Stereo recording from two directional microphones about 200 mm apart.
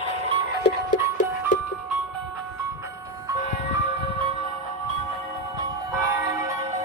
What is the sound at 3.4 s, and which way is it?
Music, 35° left (ahead or behind).